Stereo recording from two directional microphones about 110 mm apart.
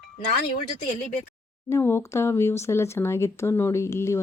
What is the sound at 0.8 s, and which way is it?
Speech, 80° left.